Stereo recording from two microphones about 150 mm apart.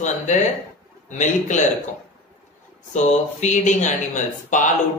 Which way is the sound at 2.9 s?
55° left (ahead or behind).